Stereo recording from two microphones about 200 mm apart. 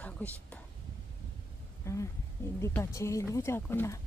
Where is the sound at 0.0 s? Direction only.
5° left (ahead or behind).